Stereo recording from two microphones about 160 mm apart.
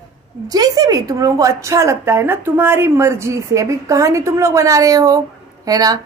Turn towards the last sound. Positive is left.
turn(degrees=-25)  # may be behind; listen again after turning